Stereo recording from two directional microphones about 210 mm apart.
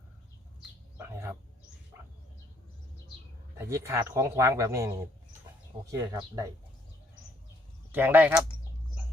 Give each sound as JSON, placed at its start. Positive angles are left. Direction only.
{"t": 0.9, "sound": "bird", "side_deg": -10}
{"t": 3.6, "sound": "speech", "side_deg": -10}
{"t": 7.9, "sound": "speech", "side_deg": -10}